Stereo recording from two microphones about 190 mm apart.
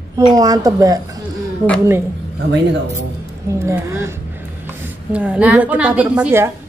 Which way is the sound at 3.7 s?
15° right (ahead or behind).